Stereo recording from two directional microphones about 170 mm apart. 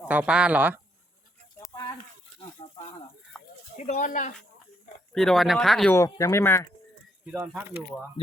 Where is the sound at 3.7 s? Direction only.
45° left (ahead or behind).